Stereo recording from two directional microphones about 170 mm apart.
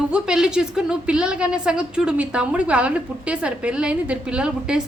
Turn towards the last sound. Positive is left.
turn(degrees=-5)  # may be behind; listen again after turning